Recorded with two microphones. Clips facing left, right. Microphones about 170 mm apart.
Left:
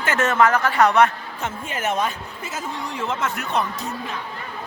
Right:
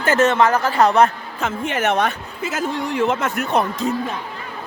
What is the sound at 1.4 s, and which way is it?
A man's voice, 70° right (ahead or behind).